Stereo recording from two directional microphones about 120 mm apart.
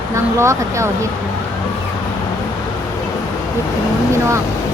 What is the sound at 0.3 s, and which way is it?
Speech, 25° right (ahead or behind).